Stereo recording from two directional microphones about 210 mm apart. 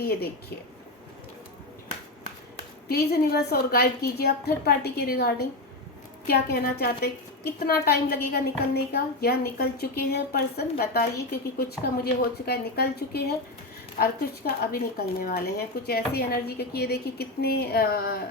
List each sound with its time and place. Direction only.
0.0 s a woman's voice: 45° left (ahead or behind)
2.9 s a woman's voice: 50° left (ahead or behind)